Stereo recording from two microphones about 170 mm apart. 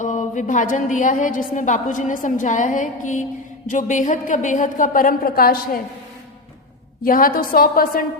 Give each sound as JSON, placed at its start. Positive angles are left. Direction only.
{"t": 0.0, "sound": "a woman's voice", "side_deg": 45}
{"t": 7.0, "sound": "a woman's voice", "side_deg": 55}